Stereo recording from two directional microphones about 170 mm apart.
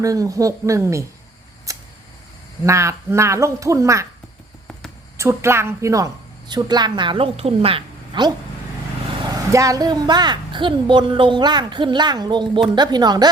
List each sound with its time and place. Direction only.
0.0 s a woman's voice: 20° right (ahead or behind)
1.7 s a sound: 20° right (ahead or behind)
2.6 s a man's voice: 15° right (ahead or behind)
5.1 s a man's voice: 15° right (ahead or behind)
9.5 s a woman's voice: 20° right (ahead or behind)